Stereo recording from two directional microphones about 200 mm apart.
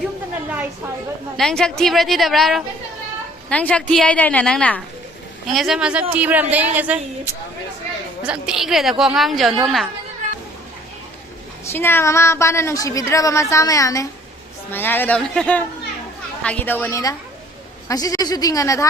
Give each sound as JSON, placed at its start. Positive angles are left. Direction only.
{"t": 1.4, "sound": "a woman's voice", "side_deg": 5}
{"t": 8.3, "sound": "a woman's voice", "side_deg": -5}
{"t": 11.6, "sound": "a woman's voice", "side_deg": 10}